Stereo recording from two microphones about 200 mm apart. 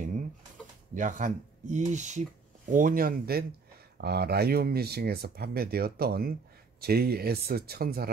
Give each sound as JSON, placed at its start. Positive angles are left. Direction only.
{"t": 0.9, "sound": "speech", "side_deg": -40}